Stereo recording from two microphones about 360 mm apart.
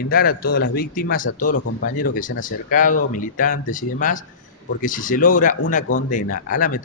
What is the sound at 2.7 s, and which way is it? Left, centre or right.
Speech, left.